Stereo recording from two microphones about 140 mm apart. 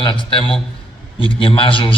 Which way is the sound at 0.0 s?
35° left (ahead or behind).